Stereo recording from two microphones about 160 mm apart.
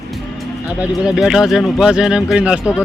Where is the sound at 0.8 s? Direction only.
5° right (ahead or behind).